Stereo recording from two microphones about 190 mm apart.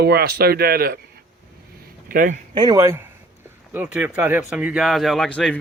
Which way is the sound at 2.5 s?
20° right (ahead or behind).